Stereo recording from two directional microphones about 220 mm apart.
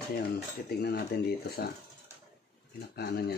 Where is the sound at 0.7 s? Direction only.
45° left (ahead or behind).